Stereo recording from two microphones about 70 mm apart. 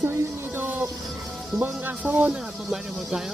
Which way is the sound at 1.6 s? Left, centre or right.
Right.